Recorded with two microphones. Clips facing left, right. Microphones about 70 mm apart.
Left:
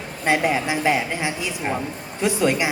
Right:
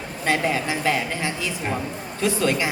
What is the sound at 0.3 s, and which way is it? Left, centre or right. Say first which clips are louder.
A woman's voice: left 2 dB; centre.